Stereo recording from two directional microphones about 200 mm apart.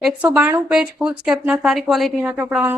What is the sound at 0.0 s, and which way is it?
A woman's voice, 5° right (ahead or behind).